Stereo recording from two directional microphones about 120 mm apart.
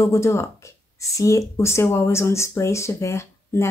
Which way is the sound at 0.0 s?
25° left (ahead or behind).